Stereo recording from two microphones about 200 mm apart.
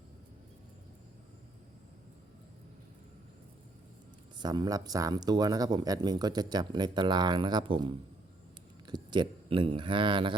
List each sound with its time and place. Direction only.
4.4 s speech: 20° right (ahead or behind)